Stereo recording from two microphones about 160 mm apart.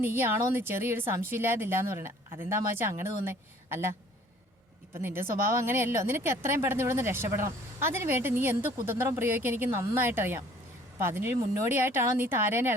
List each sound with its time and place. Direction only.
0.0 s a woman's voice: 15° right (ahead or behind)
4.9 s a woman's voice: 15° right (ahead or behind)